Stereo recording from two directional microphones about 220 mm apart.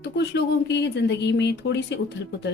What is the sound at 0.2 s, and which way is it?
A woman's voice, 50° left (ahead or behind).